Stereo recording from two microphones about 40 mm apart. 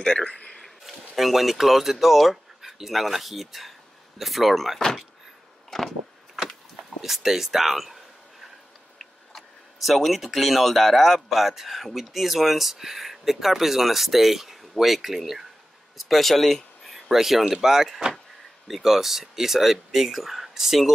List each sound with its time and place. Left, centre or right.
0.0 s speech: left
0.8 s speech: centre
5.7 s vehicle: centre
6.3 s power windows: centre
9.3 s speech: centre